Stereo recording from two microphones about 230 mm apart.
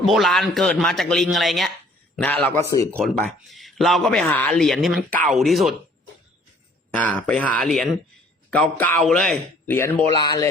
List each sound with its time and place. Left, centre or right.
0.0 s a man's voice: centre
6.9 s a man's voice: centre
10.1 s speech: centre